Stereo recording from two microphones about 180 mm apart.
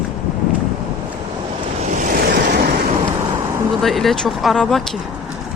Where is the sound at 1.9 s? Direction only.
50° right (ahead or behind).